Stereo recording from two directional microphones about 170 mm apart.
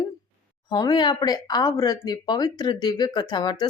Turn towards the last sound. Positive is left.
turn(degrees=25)  # may be behind; listen again after turning